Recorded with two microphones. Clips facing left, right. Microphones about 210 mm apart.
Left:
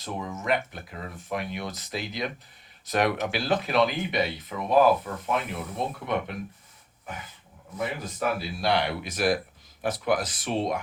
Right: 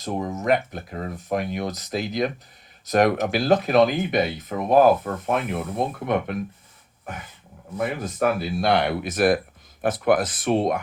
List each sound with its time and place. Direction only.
0.0 s speech: 40° right (ahead or behind)
7.8 s speech: 50° right (ahead or behind)